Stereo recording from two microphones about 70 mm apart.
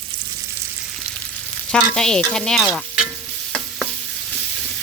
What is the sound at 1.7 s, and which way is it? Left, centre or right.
Frying, centre.